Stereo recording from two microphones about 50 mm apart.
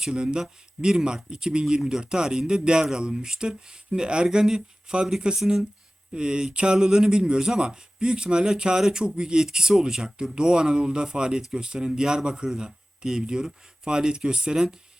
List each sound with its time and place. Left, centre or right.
0.0 s speech: centre